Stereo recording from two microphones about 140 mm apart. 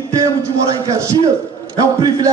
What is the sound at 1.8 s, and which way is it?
Speech, 25° right (ahead or behind).